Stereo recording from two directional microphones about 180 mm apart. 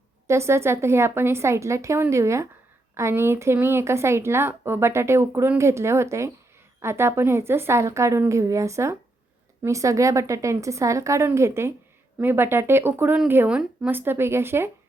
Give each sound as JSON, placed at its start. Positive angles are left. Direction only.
{"t": 0.3, "sound": "a woman's voice", "side_deg": -15}